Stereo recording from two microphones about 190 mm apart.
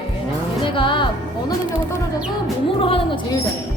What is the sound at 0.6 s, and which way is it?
Music, 25° left (ahead or behind).